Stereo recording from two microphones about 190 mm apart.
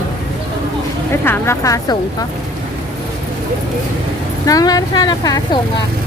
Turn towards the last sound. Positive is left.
turn(degrees=20)  # may be behind; listen again after turning